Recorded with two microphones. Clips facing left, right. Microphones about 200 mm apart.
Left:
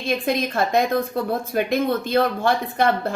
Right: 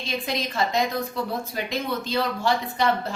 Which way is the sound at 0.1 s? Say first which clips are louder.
Left 7 dB; 55° left (ahead or behind).